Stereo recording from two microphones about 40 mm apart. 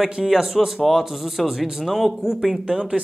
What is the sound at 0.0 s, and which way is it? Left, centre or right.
Speech, centre.